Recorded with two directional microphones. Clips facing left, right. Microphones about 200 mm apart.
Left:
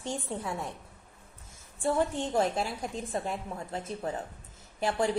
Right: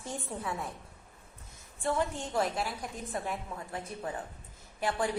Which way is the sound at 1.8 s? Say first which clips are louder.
Left 4 dB; 30° left (ahead or behind).